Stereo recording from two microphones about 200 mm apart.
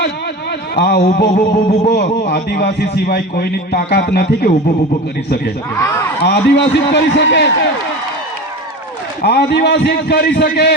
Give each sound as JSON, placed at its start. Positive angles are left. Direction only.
{"t": 0.8, "sound": "a man's voice", "side_deg": 50}
{"t": 1.2, "sound": "speech", "side_deg": 40}
{"t": 2.3, "sound": "a man's voice", "side_deg": 50}
{"t": 5.7, "sound": "speech", "side_deg": 15}
{"t": 6.2, "sound": "a man's voice", "side_deg": 55}
{"t": 9.2, "sound": "a man's voice", "side_deg": 55}